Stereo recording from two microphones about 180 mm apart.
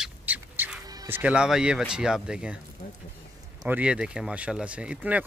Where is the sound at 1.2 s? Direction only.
5° right (ahead or behind).